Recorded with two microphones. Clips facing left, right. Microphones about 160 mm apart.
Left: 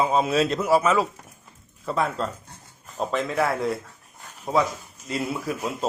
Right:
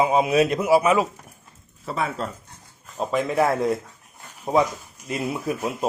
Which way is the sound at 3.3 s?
20° right (ahead or behind).